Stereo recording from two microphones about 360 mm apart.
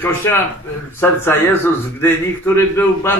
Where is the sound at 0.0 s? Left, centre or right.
Centre.